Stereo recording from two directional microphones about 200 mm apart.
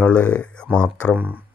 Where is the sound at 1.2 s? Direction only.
10° right (ahead or behind).